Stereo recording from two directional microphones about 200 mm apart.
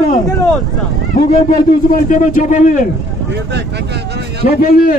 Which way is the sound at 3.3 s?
60° right (ahead or behind).